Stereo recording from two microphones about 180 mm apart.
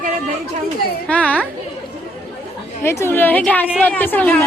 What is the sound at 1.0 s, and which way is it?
Speech, 10° left (ahead or behind).